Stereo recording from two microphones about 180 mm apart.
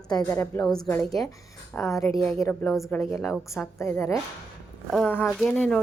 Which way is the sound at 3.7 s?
15° left (ahead or behind).